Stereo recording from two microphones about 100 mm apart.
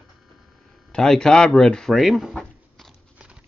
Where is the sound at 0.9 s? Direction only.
5° left (ahead or behind).